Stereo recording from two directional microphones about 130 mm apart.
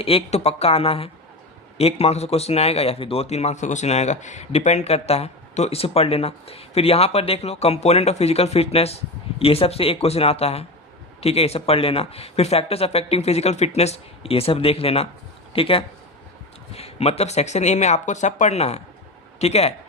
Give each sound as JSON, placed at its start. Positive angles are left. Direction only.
{"t": 0.0, "sound": "a man's voice", "side_deg": 50}